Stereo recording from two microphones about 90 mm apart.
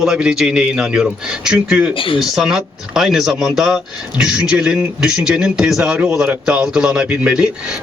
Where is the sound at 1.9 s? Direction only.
75° left (ahead or behind).